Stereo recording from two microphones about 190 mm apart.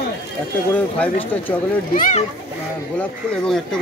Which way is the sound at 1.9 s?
45° left (ahead or behind).